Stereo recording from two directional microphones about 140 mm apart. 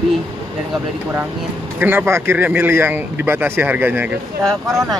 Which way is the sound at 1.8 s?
15° right (ahead or behind).